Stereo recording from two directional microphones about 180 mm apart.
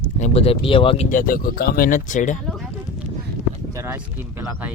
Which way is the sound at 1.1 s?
50° left (ahead or behind).